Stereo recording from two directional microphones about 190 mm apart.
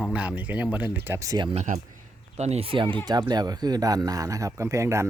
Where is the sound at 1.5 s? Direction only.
35° right (ahead or behind); by 5.1 s 15° right (ahead or behind).